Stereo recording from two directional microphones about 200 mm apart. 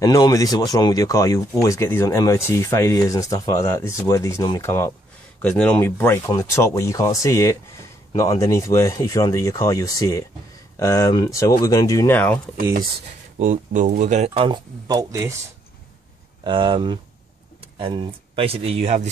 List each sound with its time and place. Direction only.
0.0 s speech: 20° left (ahead or behind)
13.4 s speech: 40° right (ahead or behind); by 15.3 s 15° right (ahead or behind)
16.4 s speech: 25° right (ahead or behind)